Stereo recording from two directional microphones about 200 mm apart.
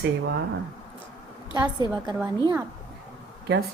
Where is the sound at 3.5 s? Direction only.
55° right (ahead or behind).